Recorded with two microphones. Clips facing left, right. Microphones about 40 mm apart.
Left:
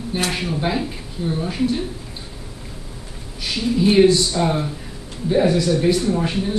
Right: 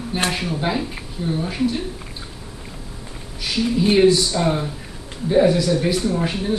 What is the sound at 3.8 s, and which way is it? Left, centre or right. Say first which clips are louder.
Speech: left 1 dB; centre.